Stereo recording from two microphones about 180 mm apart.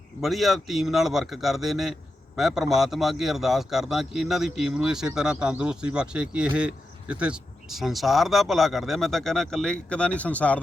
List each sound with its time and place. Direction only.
0.2 s a man's voice: centre (ahead or behind)